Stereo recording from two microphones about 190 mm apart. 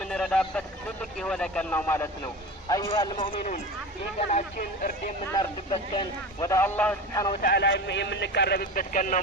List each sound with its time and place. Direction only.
0.0 s a sound: 5° left (ahead or behind)
1.2 s a man's voice: 5° left (ahead or behind); by 3.5 s 25° left (ahead or behind)
4.2 s speech: 35° left (ahead or behind)
5.4 s a man's voice: 20° left (ahead or behind)
7.4 s speech: 60° left (ahead or behind); by 9.2 s 45° left (ahead or behind)